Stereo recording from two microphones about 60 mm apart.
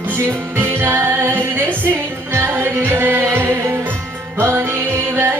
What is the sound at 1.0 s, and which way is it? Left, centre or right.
Music, right.